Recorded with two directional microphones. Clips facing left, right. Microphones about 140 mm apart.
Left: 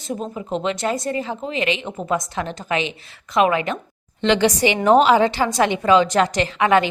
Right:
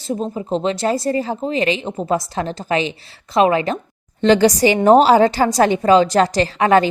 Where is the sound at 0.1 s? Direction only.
30° right (ahead or behind).